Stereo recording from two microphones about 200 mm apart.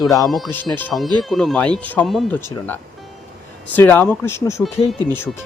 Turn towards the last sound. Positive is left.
turn(degrees=10)  # may be behind; listen again after turning